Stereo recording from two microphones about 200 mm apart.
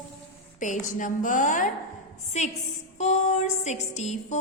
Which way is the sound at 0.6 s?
40° left (ahead or behind).